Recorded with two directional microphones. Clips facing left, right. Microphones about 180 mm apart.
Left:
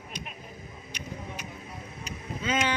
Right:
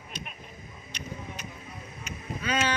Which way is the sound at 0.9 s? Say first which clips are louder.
Even; 10° left (ahead or behind).